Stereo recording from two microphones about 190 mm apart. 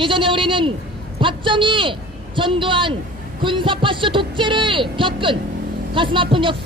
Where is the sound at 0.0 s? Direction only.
25° right (ahead or behind).